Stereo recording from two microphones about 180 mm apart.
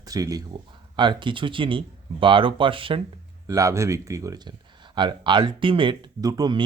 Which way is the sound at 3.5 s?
15° right (ahead or behind).